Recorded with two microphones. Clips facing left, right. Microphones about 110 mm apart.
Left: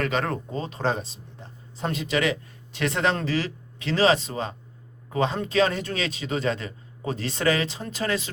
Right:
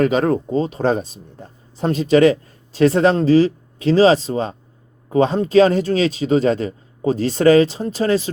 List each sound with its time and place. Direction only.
0.0 s speech: 35° right (ahead or behind)